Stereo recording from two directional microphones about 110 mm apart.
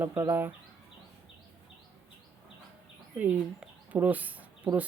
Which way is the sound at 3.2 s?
15° right (ahead or behind).